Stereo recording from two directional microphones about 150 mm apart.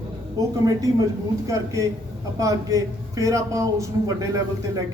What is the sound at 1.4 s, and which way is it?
A man's voice, 20° right (ahead or behind).